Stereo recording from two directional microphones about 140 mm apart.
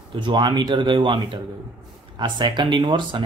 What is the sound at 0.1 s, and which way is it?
Speech, 35° right (ahead or behind).